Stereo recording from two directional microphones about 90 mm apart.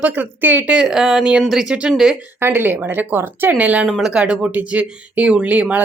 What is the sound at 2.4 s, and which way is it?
Speech, 25° right (ahead or behind).